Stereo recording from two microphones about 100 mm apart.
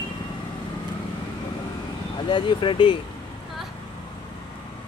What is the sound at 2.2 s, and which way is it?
Speech, 55° left (ahead or behind).